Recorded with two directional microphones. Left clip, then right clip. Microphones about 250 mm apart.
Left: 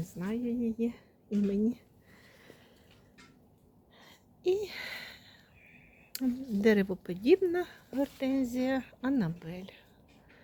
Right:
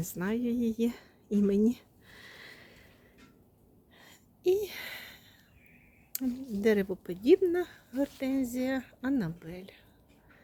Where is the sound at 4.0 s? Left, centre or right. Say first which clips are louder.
Right 2 dB; centre.